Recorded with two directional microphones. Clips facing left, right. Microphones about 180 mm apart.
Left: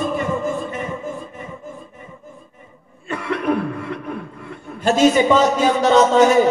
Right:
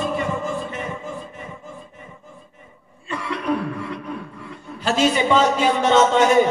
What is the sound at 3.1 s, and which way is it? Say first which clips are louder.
Cough: left 4 dB; 50° left (ahead or behind).